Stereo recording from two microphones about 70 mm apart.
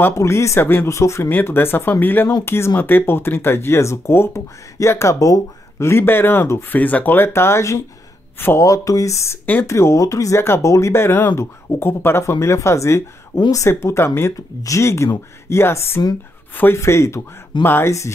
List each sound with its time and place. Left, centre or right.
0.1 s speech: left
1.3 s speech: left
6.7 s speech: left
8.5 s speech: left
10.4 s speech: left